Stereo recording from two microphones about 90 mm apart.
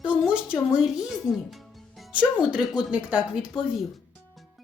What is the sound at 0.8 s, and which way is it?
Music, 5° right (ahead or behind).